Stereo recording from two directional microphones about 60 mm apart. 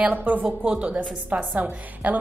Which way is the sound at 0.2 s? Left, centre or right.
Right.